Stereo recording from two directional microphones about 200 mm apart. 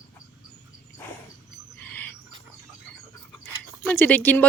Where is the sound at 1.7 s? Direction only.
10° left (ahead or behind).